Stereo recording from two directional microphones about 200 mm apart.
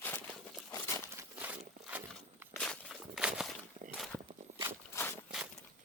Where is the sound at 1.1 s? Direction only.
10° right (ahead or behind).